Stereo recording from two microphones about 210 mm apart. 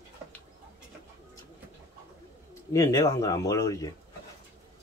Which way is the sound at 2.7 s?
15° left (ahead or behind).